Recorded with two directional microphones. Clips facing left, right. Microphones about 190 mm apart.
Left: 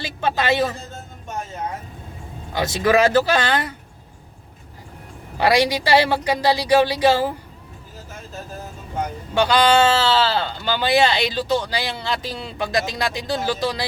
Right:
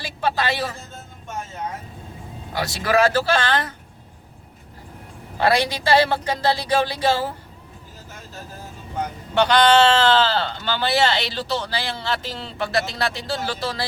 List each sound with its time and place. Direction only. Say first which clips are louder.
0.0 s speech: left 1 dB; 20° left (ahead or behind)
2.6 s speech: left 2 dB; 20° left (ahead or behind)
5.4 s speech: left 2 dB; 15° left (ahead or behind)
9.3 s speech: even; 10° left (ahead or behind)